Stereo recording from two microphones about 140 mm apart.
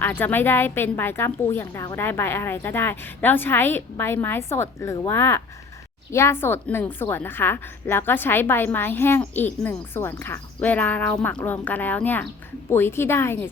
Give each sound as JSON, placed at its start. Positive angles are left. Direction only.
{"t": 0.0, "sound": "a woman's voice", "side_deg": 15}